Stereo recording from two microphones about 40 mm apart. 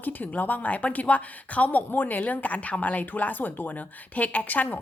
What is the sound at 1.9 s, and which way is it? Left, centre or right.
A woman's voice, left.